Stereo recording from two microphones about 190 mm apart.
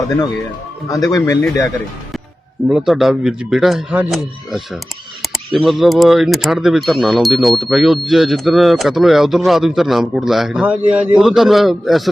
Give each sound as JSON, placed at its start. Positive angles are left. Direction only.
{"t": 0.9, "sound": "speech", "side_deg": 15}
{"t": 2.6, "sound": "speech", "side_deg": 0}
{"t": 5.2, "sound": "a sound", "side_deg": 0}
{"t": 5.6, "sound": "speech", "side_deg": 0}